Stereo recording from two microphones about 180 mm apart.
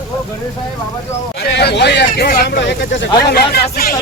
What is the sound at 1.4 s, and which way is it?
Speech, 65° left (ahead or behind).